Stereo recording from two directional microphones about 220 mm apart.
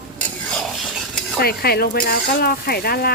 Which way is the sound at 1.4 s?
45° left (ahead or behind).